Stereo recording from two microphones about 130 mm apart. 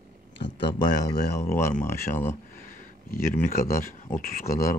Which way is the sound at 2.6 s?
90° left.